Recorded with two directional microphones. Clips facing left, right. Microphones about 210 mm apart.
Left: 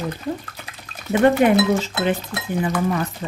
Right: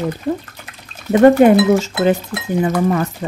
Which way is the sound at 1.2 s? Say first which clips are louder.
Right 6 dB; 45° right (ahead or behind).